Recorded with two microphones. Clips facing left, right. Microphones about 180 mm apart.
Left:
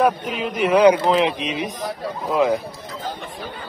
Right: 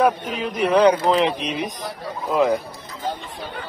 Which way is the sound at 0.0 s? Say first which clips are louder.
Even; centre (ahead or behind).